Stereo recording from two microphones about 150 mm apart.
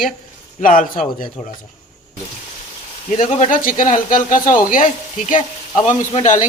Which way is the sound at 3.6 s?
65° left (ahead or behind).